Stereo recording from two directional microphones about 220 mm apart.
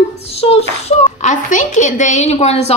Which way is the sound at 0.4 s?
30° left (ahead or behind).